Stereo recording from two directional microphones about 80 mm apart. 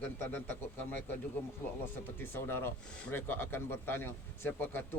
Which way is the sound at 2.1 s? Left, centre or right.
Left.